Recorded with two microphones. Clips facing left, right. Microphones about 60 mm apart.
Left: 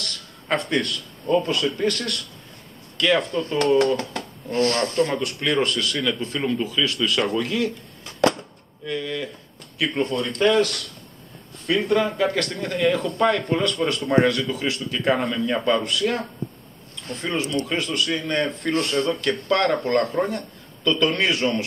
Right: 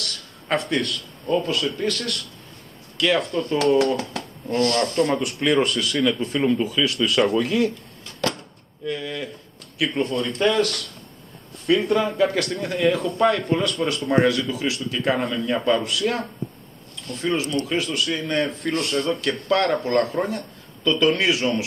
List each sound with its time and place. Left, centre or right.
0.0 s speech: centre
4.5 s speech: left
5.1 s speech: centre
8.0 s a sound: centre
8.8 s speech: centre
11.6 s speech: centre